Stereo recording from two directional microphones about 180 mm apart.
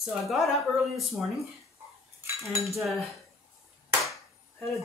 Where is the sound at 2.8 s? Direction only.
Centre (ahead or behind).